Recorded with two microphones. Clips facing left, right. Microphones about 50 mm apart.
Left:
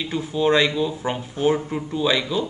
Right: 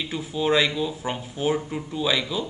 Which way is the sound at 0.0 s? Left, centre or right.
Centre.